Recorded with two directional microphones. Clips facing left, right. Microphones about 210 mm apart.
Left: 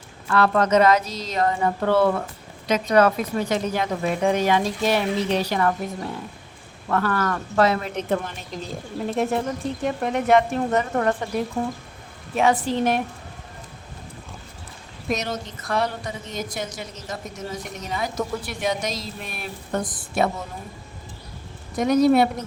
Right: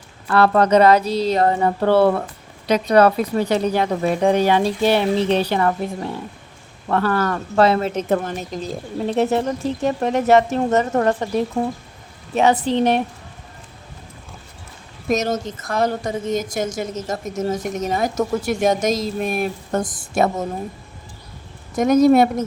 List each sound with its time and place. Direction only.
0.3 s speech: 35° right (ahead or behind)
6.8 s speech: 30° right (ahead or behind)
7.9 s a woman's voice: 45° right (ahead or behind)
9.2 s speech: 80° right
9.8 s speech: 40° right (ahead or behind)
12.5 s speech: 35° right (ahead or behind)
15.1 s a woman's voice: 45° right (ahead or behind)
21.8 s a woman's voice: 45° right (ahead or behind)